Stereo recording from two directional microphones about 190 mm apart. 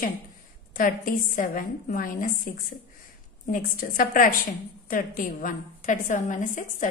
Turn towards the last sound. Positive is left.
turn(degrees=40)  # may be behind; listen again after turning